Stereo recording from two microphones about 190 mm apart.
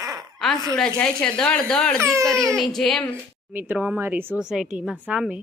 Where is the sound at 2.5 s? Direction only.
Centre (ahead or behind).